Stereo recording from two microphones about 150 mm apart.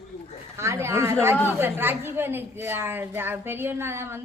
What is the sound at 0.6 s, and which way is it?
A woman's voice, 15° right (ahead or behind).